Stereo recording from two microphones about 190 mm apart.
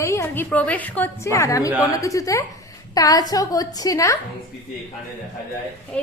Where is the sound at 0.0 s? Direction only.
15° left (ahead or behind).